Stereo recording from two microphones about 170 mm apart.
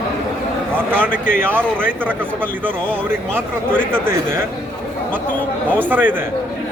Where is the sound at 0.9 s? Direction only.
5° left (ahead or behind).